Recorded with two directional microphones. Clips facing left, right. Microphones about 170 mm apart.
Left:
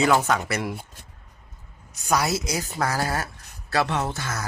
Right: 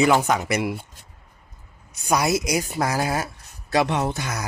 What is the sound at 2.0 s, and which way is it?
Speech, 15° right (ahead or behind).